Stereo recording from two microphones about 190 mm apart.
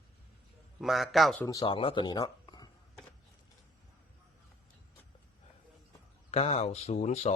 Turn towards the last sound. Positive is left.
turn(degrees=35)  # may be behind; listen again after turning